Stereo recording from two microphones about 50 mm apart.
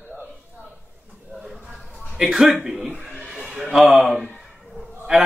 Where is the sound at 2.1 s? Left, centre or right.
Centre.